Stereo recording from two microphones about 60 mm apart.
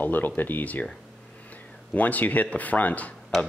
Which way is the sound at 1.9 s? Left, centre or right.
Left.